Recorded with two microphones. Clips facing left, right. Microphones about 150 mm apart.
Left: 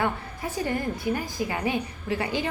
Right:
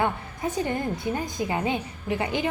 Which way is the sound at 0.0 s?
20° right (ahead or behind).